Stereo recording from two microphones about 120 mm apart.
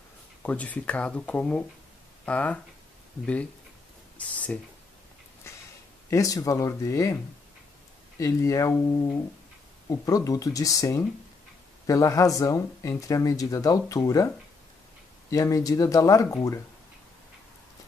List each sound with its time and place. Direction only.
0.4 s speech: 10° left (ahead or behind)
4.2 s speech: 10° left (ahead or behind)
6.0 s speech: 25° left (ahead or behind)
8.2 s speech: 25° left (ahead or behind)
15.3 s speech: 30° left (ahead or behind)